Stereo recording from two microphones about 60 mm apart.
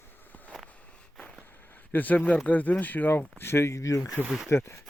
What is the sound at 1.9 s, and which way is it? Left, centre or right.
Speech, left.